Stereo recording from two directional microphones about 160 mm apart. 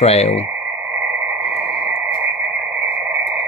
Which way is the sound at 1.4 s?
40° left (ahead or behind).